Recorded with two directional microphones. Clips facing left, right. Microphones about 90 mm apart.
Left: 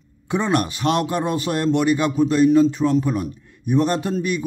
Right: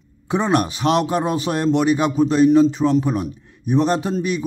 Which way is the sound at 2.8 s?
15° right (ahead or behind).